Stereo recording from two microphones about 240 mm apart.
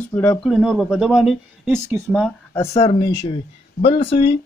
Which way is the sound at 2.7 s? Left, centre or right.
Left.